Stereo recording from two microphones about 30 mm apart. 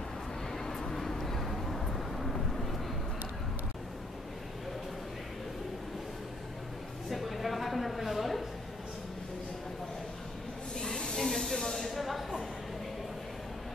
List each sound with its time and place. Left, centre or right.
0.7 s vehicle: centre
7.1 s a sound: centre
10.8 s snake: left
11.1 s snake: centre